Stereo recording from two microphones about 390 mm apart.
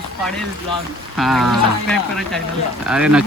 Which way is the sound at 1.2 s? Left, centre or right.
Centre.